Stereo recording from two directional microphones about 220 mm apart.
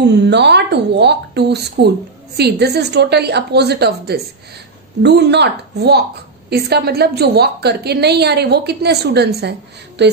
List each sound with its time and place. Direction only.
0.0 s a woman's voice: 50° right (ahead or behind)